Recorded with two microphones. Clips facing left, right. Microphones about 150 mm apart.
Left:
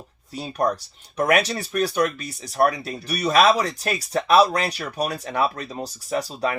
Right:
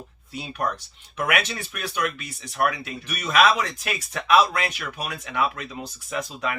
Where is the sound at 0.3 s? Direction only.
35° left (ahead or behind).